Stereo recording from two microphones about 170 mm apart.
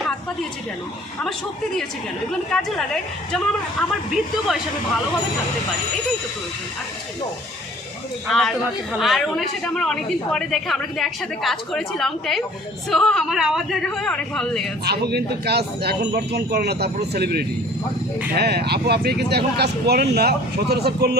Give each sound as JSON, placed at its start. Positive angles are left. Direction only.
{"t": 2.5, "sound": "a man's voice", "side_deg": 5}
{"t": 8.3, "sound": "a man's voice", "side_deg": 0}
{"t": 14.8, "sound": "speech", "side_deg": -70}